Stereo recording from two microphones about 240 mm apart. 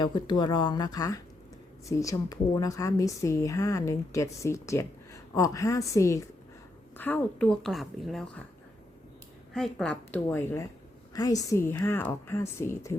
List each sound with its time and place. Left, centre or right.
0.0 s a woman's voice: centre
9.5 s a woman's voice: centre